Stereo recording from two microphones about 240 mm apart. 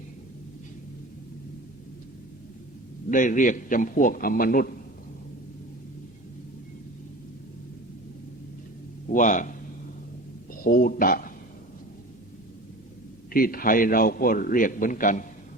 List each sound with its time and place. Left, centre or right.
3.1 s a man's voice: left
9.1 s a man's voice: left
10.6 s a man's voice: left
13.3 s a man's voice: left